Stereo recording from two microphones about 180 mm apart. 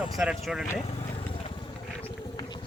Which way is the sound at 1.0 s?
30° left (ahead or behind).